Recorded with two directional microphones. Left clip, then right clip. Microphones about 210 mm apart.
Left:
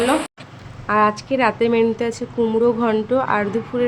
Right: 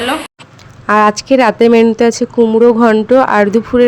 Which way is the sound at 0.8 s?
40° right (ahead or behind).